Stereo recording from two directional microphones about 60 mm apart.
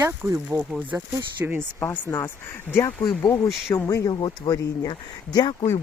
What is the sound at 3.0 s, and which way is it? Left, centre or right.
Speech, left.